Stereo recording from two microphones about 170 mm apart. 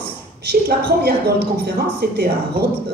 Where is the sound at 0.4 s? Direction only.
70° right (ahead or behind).